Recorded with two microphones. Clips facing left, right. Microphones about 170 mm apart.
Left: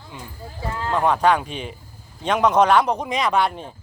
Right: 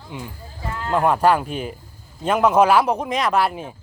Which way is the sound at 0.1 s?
15° right (ahead or behind).